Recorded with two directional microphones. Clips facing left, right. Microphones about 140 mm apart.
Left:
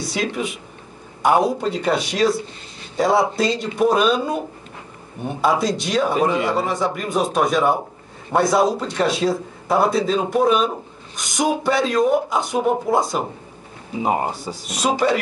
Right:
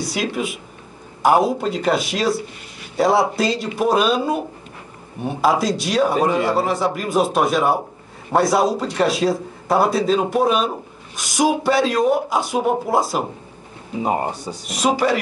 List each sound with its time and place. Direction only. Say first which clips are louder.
1.2 s speech: right 1 dB; 5° right (ahead or behind)
5.4 s speech: right 1 dB; centre (ahead or behind)